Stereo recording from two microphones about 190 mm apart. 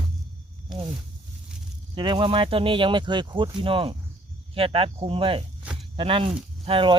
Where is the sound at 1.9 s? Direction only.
25° right (ahead or behind).